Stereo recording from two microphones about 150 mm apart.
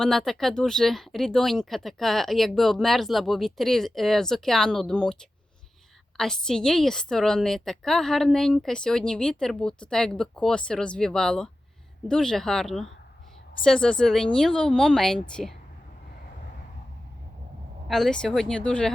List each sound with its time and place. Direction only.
0.0 s a woman's voice: centre (ahead or behind)
6.1 s a woman's voice: 5° left (ahead or behind)
17.8 s a woman's voice: centre (ahead or behind)